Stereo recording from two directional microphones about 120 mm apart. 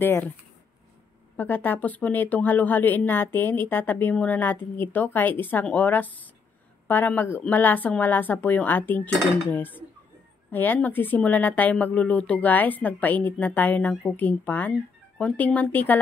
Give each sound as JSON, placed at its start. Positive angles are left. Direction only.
{"t": 1.3, "sound": "a woman's voice", "side_deg": 15}